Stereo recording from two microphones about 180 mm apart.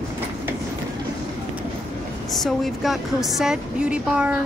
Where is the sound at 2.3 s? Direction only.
Centre (ahead or behind).